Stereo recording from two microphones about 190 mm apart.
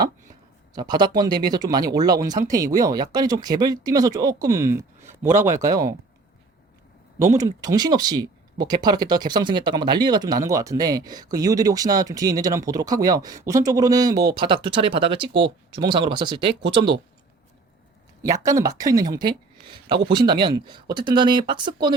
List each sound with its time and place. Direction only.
0.7 s speech: 20° right (ahead or behind)
7.2 s speech: 15° right (ahead or behind)
18.2 s speech: 15° right (ahead or behind)